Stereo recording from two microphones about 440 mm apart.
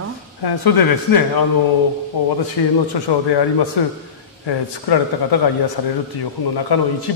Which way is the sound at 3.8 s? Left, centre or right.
Left.